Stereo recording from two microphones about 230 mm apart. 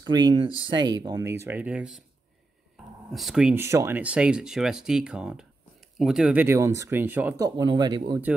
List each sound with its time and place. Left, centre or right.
0.0 s speech: centre
3.1 s speech: centre